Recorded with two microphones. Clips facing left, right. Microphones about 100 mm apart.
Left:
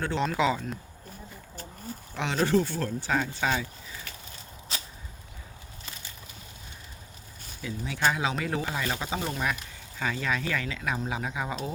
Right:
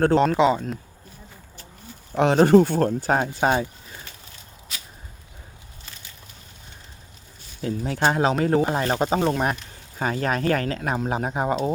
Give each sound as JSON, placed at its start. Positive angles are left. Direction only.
{"t": 0.0, "sound": "speech", "side_deg": -50}
{"t": 0.3, "sound": "speech", "side_deg": -25}
{"t": 2.1, "sound": "speech", "side_deg": -50}
{"t": 4.7, "sound": "a sound", "side_deg": 30}
{"t": 7.6, "sound": "speech", "side_deg": -45}